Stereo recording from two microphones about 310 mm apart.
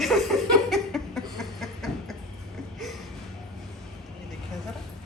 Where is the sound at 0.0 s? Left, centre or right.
Centre.